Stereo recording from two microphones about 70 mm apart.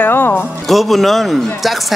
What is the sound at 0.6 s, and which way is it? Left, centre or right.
A man's voice, centre.